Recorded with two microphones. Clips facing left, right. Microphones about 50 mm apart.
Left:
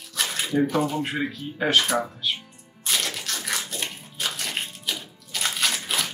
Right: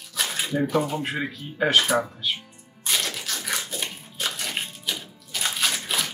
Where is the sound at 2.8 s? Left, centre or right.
Centre.